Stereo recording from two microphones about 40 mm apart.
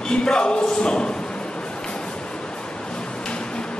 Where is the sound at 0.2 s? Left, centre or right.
Left.